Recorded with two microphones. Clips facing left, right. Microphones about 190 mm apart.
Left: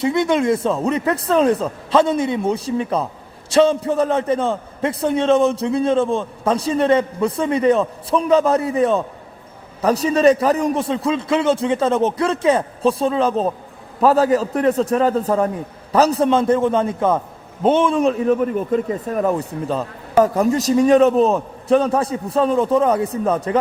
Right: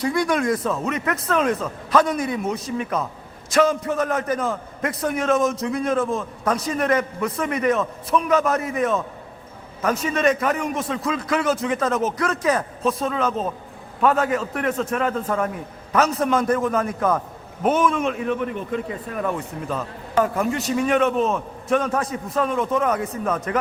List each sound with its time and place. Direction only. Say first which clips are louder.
0.0 s a man's voice: left 4 dB; 25° left (ahead or behind)